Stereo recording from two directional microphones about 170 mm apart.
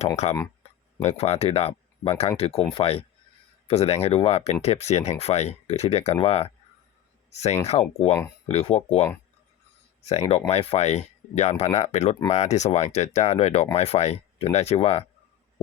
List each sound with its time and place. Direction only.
0.2 s speech: 40° left (ahead or behind)
7.7 s speech: 35° left (ahead or behind)
10.1 s speech: 35° left (ahead or behind)